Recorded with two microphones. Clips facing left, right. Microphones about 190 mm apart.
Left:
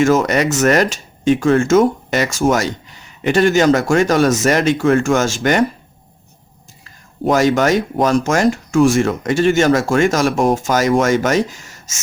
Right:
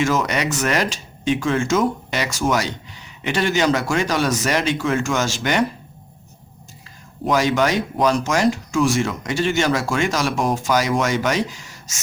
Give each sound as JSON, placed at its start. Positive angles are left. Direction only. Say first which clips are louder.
{"t": 0.0, "sound": "speech", "louder": "left 7 dB", "side_deg": 45}
{"t": 7.3, "sound": "speech", "louder": "left 5 dB", "side_deg": 45}